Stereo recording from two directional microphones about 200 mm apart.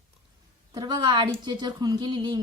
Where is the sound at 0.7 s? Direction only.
20° right (ahead or behind).